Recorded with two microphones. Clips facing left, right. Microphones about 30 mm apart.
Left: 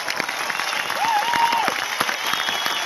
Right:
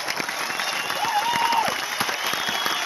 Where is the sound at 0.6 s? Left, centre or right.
Centre.